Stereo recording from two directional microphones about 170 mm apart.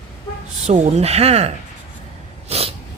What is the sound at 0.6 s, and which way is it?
Speech, 40° right (ahead or behind).